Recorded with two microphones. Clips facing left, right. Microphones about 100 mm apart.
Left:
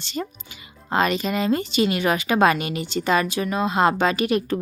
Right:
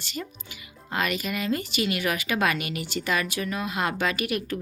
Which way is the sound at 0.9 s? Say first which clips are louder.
Left 7 dB; 30° left (ahead or behind).